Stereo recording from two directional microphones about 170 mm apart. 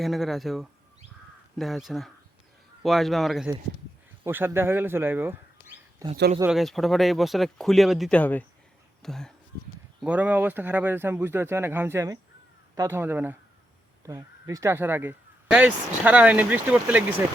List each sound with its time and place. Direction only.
0.0 s speech: centre (ahead or behind)
4.2 s speech: 10° right (ahead or behind)
6.5 s speech: centre (ahead or behind)
10.0 s speech: 10° right (ahead or behind)